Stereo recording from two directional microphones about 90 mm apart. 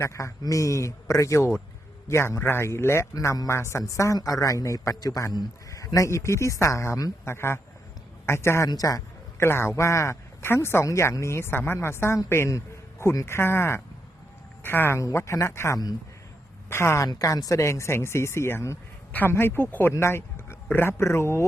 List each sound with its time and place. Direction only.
0.0 s speech: 35° left (ahead or behind)
8.7 s a man's voice: 40° left (ahead or behind)
9.5 s a woman's voice: 30° left (ahead or behind)
17.1 s speech: 40° left (ahead or behind); by 19.6 s 25° left (ahead or behind)
19.9 s a sound: 30° left (ahead or behind)
20.7 s speech: 25° left (ahead or behind)